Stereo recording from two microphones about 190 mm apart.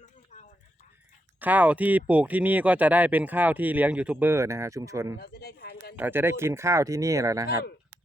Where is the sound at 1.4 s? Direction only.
10° right (ahead or behind).